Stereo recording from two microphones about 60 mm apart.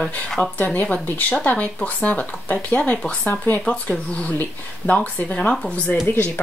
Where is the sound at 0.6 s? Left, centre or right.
Left.